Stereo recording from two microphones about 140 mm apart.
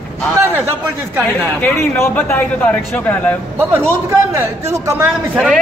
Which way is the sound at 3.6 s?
15° right (ahead or behind).